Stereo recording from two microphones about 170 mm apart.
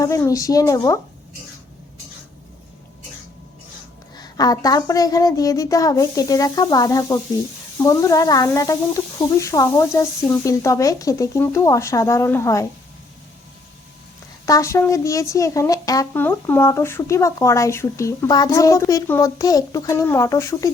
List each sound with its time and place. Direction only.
0.0 s a woman's voice: 20° left (ahead or behind)
4.2 s a woman's voice: 20° left (ahead or behind)
14.4 s speech: 20° left (ahead or behind)